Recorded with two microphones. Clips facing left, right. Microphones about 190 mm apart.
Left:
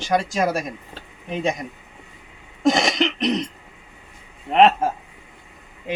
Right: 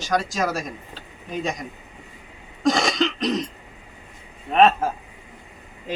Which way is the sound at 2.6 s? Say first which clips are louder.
Left 2 dB; 20° left (ahead or behind).